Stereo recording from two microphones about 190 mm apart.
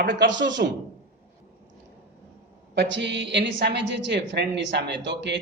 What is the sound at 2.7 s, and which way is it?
A woman's voice, 70° right (ahead or behind).